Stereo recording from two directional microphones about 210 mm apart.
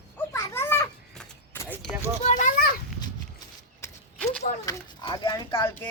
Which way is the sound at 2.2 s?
35° left (ahead or behind).